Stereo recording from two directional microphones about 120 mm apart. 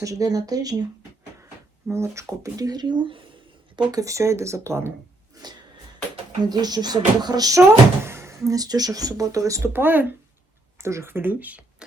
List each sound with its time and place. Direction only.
0.0 s speech: 30° right (ahead or behind)
1.9 s speech: 25° right (ahead or behind); by 3.2 s 45° right (ahead or behind)
3.8 s speech: 30° right (ahead or behind)
5.3 s a sound: 35° right (ahead or behind)
6.4 s speech: 35° right (ahead or behind); by 11.6 s 15° right (ahead or behind)